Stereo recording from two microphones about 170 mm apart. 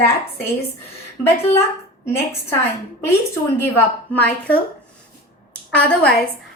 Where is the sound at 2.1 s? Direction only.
15° left (ahead or behind).